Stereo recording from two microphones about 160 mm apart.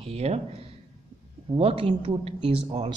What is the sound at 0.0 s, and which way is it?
Speech, 40° right (ahead or behind).